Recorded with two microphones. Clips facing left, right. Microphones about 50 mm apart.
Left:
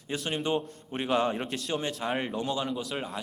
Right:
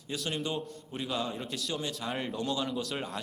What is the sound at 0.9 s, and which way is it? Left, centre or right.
Speech, left.